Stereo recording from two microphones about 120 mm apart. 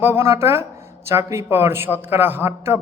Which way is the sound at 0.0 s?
20° right (ahead or behind).